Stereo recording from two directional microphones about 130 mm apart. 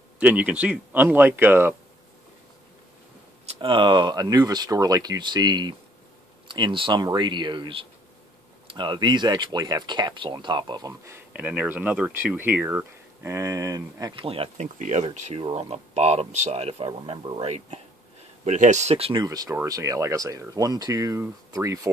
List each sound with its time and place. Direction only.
0.2 s speech: 10° right (ahead or behind)
3.4 s speech: 40° right (ahead or behind)
11.3 s speech: 10° right (ahead or behind); by 14.1 s 25° right (ahead or behind)
14.1 s speech: 45° right (ahead or behind)
14.8 s speech: 65° right (ahead or behind)
18.4 s speech: 65° right (ahead or behind); by 19.2 s 50° right (ahead or behind)
19.2 s speech: 30° right (ahead or behind)